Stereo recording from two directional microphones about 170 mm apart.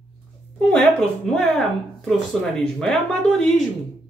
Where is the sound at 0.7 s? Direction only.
5° left (ahead or behind).